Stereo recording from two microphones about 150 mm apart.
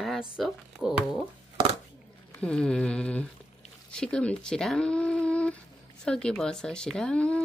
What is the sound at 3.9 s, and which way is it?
Speech, 5° left (ahead or behind).